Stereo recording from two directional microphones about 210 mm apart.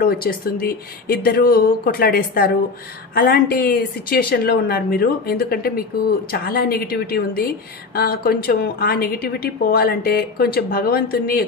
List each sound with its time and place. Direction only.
0.0 s a woman's voice: 45° left (ahead or behind)